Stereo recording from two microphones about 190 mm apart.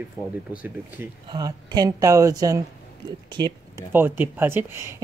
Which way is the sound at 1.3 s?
20° right (ahead or behind).